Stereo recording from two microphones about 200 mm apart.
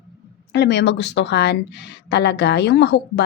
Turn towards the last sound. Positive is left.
turn(degrees=60)  # may be behind; listen again after turning